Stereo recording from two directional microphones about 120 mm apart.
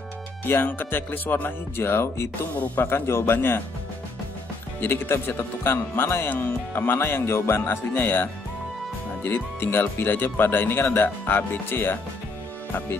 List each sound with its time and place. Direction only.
0.5 s speech: 15° left (ahead or behind)
4.7 s speech: 20° left (ahead or behind)